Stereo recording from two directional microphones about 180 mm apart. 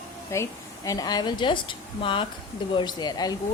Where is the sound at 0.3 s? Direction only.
15° left (ahead or behind).